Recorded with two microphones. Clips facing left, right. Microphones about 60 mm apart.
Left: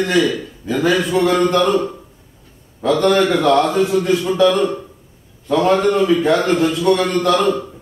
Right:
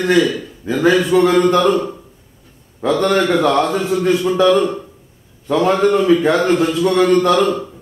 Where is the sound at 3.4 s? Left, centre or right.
Centre.